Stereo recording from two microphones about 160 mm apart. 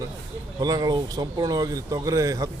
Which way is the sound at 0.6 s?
25° right (ahead or behind).